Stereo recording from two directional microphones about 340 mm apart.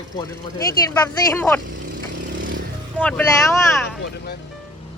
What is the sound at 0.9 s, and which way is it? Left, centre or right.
Speech, centre.